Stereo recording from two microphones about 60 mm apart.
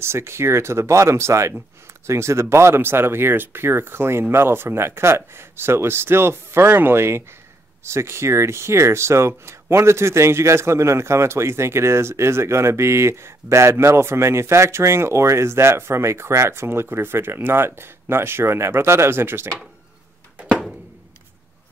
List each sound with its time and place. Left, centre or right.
0.0 s speech: right